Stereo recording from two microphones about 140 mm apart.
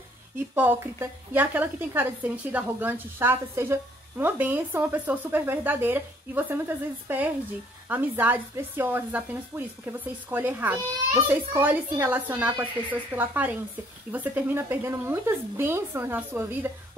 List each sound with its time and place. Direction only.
0.6 s a woman's voice: 15° right (ahead or behind)